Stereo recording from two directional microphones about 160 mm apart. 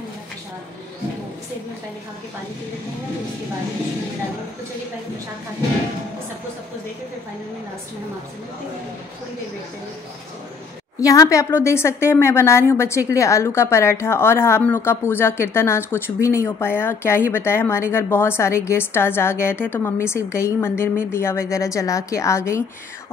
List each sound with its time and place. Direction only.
11.0 s a woman's voice: 20° left (ahead or behind)